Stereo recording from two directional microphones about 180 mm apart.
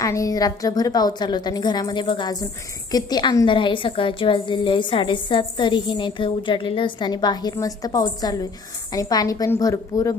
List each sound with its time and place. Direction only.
0.0 s a woman's voice: 20° left (ahead or behind)